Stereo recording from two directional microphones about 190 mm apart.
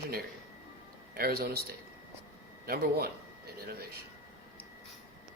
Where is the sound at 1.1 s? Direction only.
55° right (ahead or behind).